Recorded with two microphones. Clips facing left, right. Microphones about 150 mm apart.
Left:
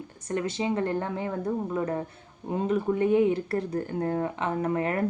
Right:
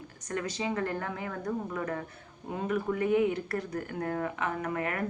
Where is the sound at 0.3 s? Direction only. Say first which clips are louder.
Left 5 dB; 25° left (ahead or behind).